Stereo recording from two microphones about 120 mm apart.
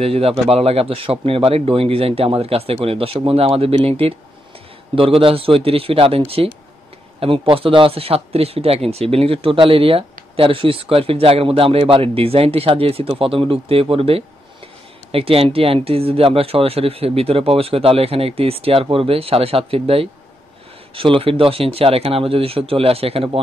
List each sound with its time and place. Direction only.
0.0 s a man's voice: 55° right (ahead or behind)